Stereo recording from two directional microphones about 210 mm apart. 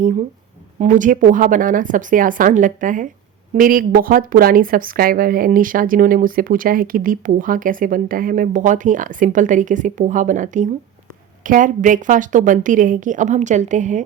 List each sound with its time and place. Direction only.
0.8 s speech: 35° right (ahead or behind)